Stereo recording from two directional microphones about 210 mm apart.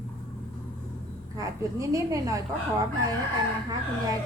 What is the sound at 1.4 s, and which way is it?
A woman's voice, 15° right (ahead or behind).